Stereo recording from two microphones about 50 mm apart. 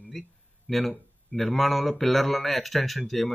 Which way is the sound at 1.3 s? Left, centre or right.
Centre.